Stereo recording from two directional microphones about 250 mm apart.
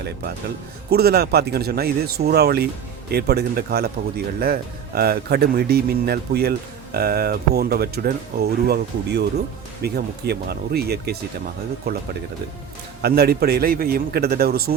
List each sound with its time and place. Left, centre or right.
0.9 s speech: right
13.0 s speech: right